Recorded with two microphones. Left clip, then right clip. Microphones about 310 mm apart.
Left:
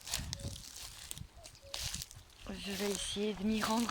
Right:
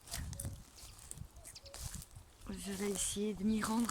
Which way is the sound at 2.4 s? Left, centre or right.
Centre.